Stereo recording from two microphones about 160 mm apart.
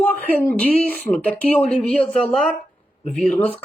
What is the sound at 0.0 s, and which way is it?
Speech, 10° left (ahead or behind).